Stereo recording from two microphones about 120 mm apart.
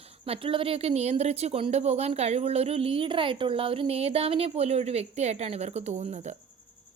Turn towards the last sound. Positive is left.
turn(degrees=-75)  # may be behind; listen again after turning